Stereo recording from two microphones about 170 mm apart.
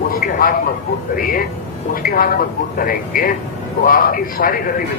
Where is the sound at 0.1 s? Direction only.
55° left (ahead or behind).